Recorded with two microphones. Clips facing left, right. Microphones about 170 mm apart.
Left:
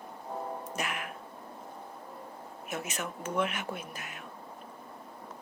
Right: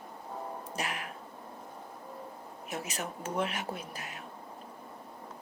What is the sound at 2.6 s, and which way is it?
Speech, 35° right (ahead or behind).